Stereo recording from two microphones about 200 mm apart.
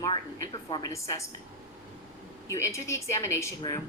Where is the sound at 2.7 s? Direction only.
15° left (ahead or behind).